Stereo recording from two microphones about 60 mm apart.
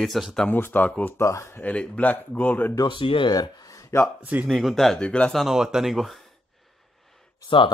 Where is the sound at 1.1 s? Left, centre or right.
Left.